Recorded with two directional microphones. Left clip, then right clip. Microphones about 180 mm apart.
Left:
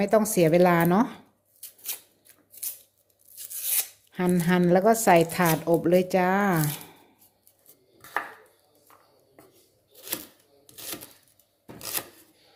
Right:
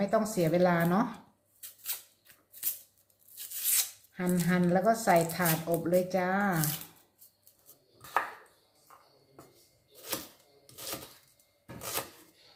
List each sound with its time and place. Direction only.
0.0 s speech: 45° left (ahead or behind)
4.1 s speech: 45° left (ahead or behind)